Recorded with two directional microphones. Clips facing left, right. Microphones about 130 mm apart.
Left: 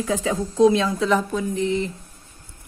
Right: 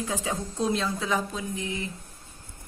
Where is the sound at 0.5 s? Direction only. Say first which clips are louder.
Left 12 dB; 90° left; by 1.7 s 70° left (ahead or behind).